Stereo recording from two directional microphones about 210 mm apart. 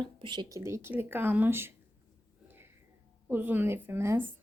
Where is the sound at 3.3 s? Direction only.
10° right (ahead or behind).